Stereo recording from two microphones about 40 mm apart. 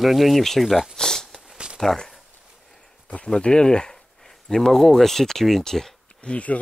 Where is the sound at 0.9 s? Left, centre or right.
Centre.